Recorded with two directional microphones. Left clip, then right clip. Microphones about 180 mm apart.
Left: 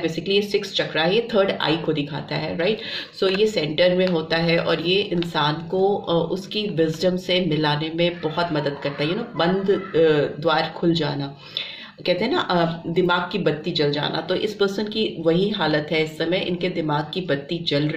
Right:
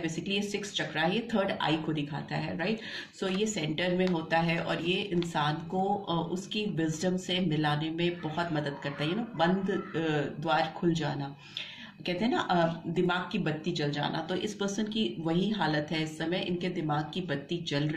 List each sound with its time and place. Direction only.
0.3 s speech: 35° left (ahead or behind)
9.9 s speech: 40° left (ahead or behind)